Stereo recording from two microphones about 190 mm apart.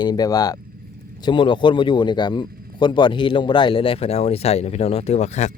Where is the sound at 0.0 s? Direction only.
20° left (ahead or behind).